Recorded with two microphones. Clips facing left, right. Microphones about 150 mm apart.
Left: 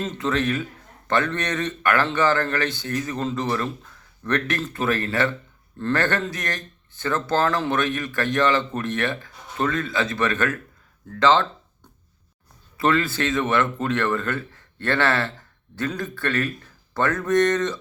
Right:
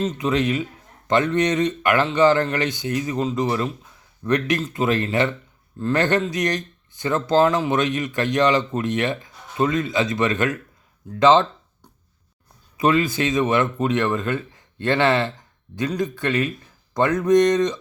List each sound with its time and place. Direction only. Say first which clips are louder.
0.2 s a man's voice: left 1 dB; 15° right (ahead or behind)
11.1 s a sound: right 3 dB; 20° right (ahead or behind)
12.7 s speech: right 2 dB; 15° right (ahead or behind)